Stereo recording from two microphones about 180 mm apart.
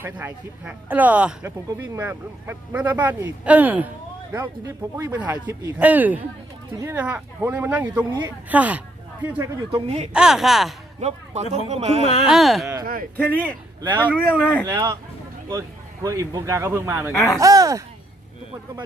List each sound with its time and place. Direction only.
0.0 s speech: 10° right (ahead or behind)
9.7 s speech: 35° right (ahead or behind)
10.1 s speech: 5° right (ahead or behind)
11.5 s speech: 35° right (ahead or behind)
12.0 s speech: 35° left (ahead or behind)
12.3 s speech: centre (ahead or behind)
12.8 s speech: 55° right (ahead or behind)
13.1 s speech: 10° left (ahead or behind)
14.7 s speech: 20° right (ahead or behind)
16.0 s speech: 20° right (ahead or behind)